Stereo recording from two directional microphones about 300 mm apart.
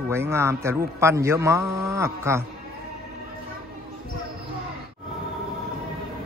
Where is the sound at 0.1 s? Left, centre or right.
Centre.